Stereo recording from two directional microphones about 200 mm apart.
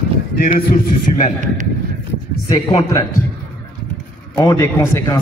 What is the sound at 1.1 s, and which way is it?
Speech, 35° left (ahead or behind).